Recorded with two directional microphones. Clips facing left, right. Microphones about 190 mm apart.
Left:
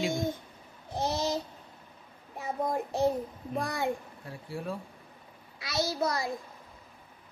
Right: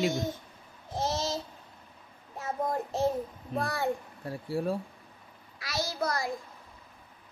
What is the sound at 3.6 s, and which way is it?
Speech, 15° left (ahead or behind).